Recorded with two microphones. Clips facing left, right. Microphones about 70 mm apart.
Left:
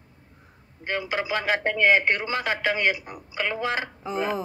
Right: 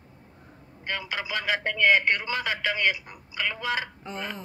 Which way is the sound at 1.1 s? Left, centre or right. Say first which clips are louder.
Left 4 dB; left.